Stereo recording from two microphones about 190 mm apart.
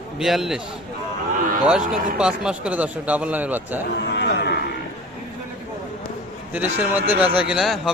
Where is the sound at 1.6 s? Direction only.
5° right (ahead or behind).